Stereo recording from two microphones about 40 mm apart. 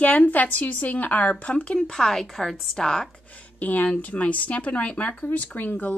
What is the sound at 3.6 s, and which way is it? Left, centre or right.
A woman's voice, left.